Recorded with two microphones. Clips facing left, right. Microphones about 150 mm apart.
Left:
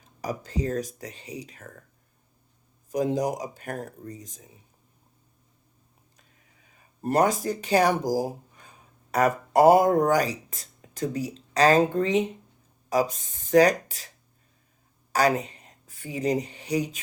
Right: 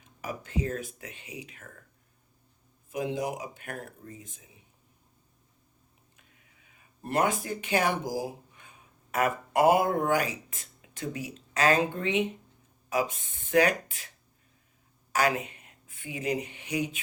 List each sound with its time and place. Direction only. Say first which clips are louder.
0.0 s speech: left 5 dB; 40° left (ahead or behind)
2.9 s speech: left 6 dB; 40° left (ahead or behind)
6.1 s a sound: left 2 dB; 40° left (ahead or behind)
9.1 s speech: left 5 dB; 40° left (ahead or behind)
15.1 s speech: left 4 dB; 35° left (ahead or behind)